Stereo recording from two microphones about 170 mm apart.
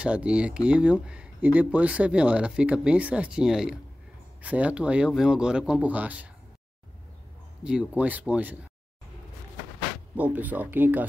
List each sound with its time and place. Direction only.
0.0 s speech: 5° right (ahead or behind)
7.6 s speech: 5° right (ahead or behind)
10.1 s speech: 10° right (ahead or behind)